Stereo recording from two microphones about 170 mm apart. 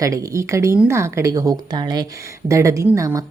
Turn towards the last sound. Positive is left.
turn(degrees=-20)  # may be behind; listen again after turning